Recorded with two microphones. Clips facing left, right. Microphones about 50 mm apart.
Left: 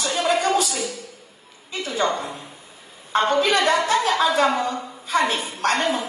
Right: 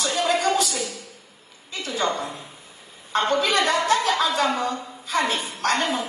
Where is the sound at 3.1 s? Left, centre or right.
Left.